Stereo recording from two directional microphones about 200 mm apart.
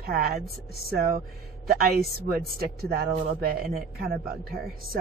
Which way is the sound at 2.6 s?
50° right (ahead or behind).